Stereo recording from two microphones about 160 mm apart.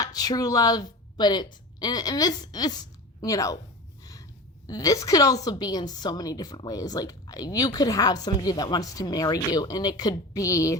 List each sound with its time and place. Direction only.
0.0 s a woman's voice: 25° left (ahead or behind)